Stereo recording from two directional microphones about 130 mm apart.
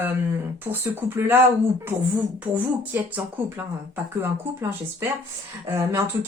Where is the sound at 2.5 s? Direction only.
10° right (ahead or behind).